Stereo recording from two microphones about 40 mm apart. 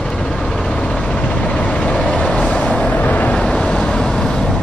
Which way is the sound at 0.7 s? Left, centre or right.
Left.